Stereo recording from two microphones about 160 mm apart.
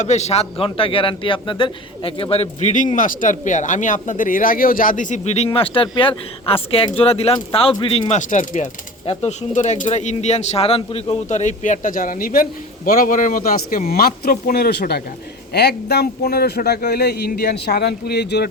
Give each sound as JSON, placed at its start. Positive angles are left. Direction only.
{"t": 0.0, "sound": "a man's voice", "side_deg": 45}